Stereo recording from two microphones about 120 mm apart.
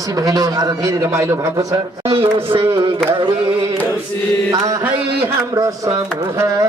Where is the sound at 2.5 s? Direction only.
55° right (ahead or behind).